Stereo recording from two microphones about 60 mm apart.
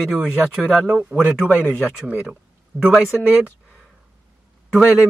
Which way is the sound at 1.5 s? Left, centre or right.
Left.